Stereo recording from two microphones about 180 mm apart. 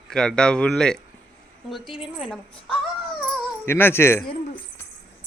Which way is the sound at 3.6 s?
10° left (ahead or behind).